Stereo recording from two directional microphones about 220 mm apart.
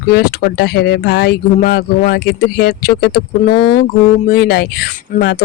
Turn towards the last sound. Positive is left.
turn(degrees=50)  # may be behind; listen again after turning